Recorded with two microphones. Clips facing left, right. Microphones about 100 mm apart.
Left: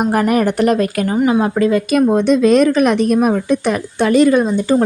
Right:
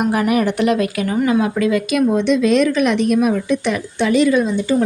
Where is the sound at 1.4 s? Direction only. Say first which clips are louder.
Left 2 dB; 35° left (ahead or behind).